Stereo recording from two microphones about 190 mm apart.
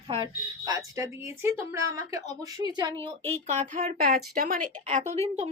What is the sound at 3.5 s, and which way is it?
A woman's voice, 40° right (ahead or behind).